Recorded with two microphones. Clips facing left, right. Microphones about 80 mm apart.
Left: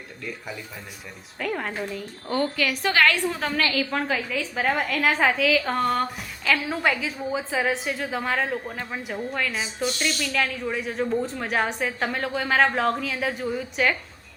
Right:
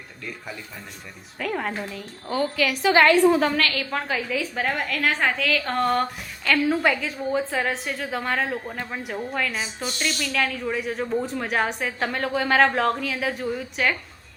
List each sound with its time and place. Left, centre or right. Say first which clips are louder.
1.4 s a woman's voice: right 1 dB; centre
2.9 s a woman's voice: right 6 dB; right
3.3 s a woman's voice: right 3 dB; centre